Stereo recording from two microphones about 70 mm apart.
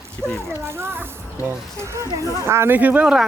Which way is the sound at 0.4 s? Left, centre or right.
Right.